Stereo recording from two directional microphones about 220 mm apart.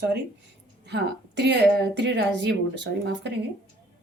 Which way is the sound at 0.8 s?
50° right (ahead or behind).